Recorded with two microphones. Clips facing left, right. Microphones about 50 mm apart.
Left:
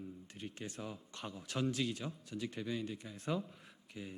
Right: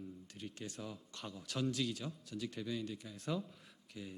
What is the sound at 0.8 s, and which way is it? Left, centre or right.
Speech, centre.